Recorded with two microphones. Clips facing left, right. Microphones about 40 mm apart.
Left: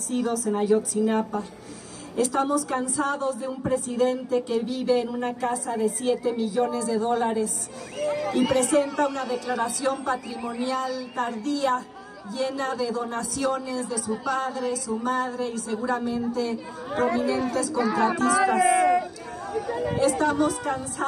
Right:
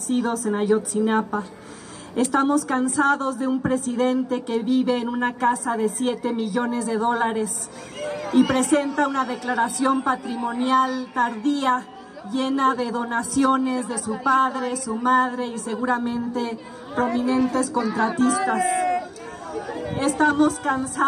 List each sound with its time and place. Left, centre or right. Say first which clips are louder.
0.1 s a woman's voice: right 3 dB; right
17.9 s a man's voice: even; left
19.5 s chatter: left 2 dB; left
20.0 s a woman's voice: right 4 dB; right